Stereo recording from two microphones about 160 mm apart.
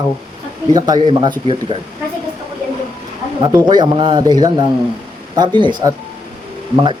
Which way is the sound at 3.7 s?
30° right (ahead or behind).